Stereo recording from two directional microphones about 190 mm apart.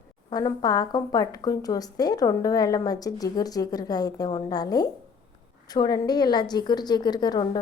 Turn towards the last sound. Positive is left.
turn(degrees=20)  # may be behind; listen again after turning